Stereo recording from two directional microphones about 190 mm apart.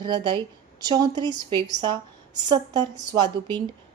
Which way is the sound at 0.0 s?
25° right (ahead or behind).